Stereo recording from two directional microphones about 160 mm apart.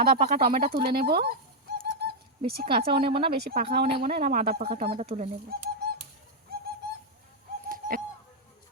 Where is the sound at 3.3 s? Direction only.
80° right.